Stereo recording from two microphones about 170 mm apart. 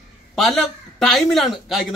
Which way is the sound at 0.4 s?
Centre (ahead or behind).